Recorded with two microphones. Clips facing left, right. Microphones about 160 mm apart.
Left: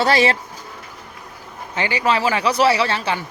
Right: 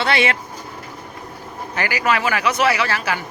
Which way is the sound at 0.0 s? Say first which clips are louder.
Left 3 dB; 35° left (ahead or behind).